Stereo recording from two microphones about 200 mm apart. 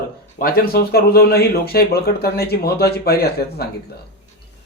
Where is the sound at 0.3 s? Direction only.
50° left (ahead or behind).